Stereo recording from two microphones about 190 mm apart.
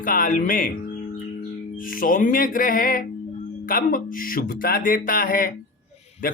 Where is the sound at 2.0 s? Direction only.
45° left (ahead or behind).